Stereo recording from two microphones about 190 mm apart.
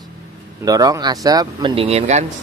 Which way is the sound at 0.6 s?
20° right (ahead or behind).